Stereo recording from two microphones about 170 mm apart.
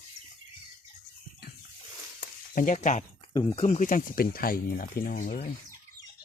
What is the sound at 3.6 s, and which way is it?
Speech, 45° left (ahead or behind).